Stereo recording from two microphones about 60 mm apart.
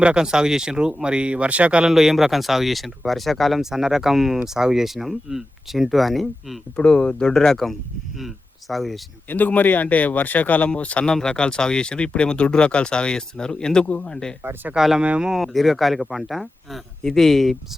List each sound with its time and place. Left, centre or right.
0.0 s speech: centre
1.9 s speech: centre
6.7 s speech: centre
9.3 s speech: left
11.1 s speech: centre
14.8 s speech: centre
15.0 s speech: centre
15.3 s speech: centre